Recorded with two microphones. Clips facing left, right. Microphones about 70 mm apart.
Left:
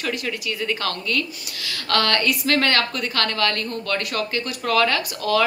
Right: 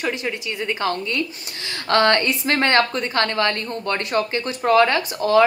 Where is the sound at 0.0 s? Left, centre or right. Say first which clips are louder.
Right 2 dB; right.